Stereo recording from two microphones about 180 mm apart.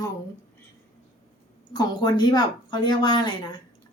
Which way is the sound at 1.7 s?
20° left (ahead or behind).